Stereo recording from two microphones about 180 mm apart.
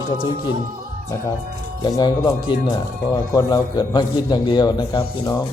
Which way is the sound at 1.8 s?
25° left (ahead or behind).